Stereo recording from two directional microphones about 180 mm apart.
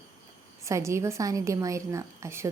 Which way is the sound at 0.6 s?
15° right (ahead or behind).